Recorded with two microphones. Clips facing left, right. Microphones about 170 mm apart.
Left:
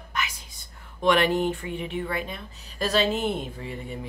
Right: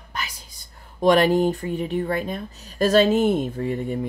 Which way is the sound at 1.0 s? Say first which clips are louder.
Right 5 dB; 40° right (ahead or behind).